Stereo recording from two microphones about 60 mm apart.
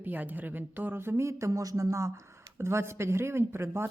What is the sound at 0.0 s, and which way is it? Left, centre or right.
Speech, right.